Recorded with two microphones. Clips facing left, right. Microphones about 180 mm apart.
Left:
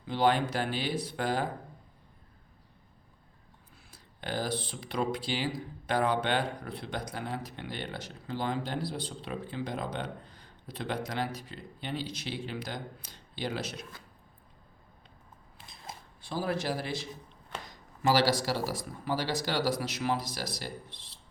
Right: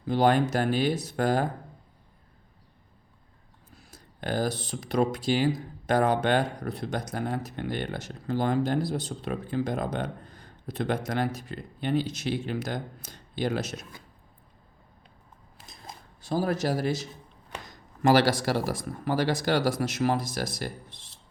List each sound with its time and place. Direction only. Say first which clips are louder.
0.0 s speech: right 4 dB; 45° right (ahead or behind)
3.8 s speech: right 6 dB; 45° right (ahead or behind)
15.5 s a sound: right 3 dB; 45° right (ahead or behind)
16.2 s speech: right 5 dB; 45° right (ahead or behind)
18.0 s speech: right 5 dB; 55° right (ahead or behind)